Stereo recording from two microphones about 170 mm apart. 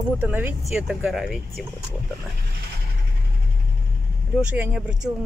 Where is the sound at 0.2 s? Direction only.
10° right (ahead or behind).